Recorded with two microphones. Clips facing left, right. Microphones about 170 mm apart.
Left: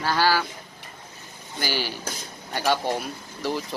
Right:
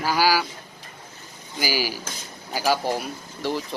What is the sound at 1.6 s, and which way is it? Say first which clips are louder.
Speech: right 2 dB; 10° right (ahead or behind).